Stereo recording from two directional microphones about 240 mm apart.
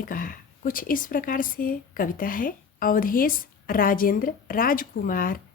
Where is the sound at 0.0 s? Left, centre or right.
Left.